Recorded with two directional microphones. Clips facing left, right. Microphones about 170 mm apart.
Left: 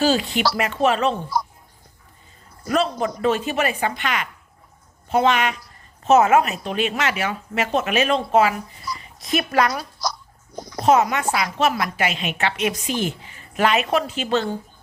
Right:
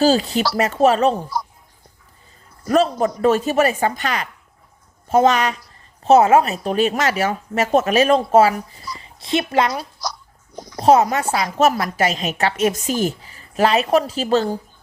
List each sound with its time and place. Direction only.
0.0 s speech: 35° right (ahead or behind)
2.6 s speech: 40° right (ahead or behind); by 9.8 s 25° right (ahead or behind)
10.8 s speech: 35° right (ahead or behind)